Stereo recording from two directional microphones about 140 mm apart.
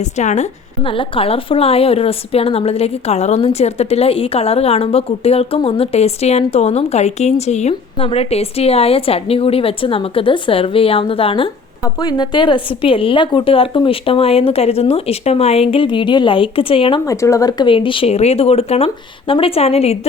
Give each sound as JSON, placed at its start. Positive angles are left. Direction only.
{"t": 0.0, "sound": "a woman's voice", "side_deg": 55}
{"t": 0.9, "sound": "a woman's voice", "side_deg": 40}
{"t": 11.9, "sound": "a woman's voice", "side_deg": 30}
{"t": 17.1, "sound": "a woman's voice", "side_deg": 20}